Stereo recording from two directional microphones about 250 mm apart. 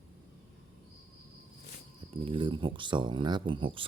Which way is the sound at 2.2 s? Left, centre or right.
Centre.